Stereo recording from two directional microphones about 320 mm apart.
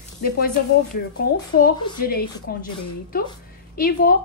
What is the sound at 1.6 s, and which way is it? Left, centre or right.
A woman's voice, left.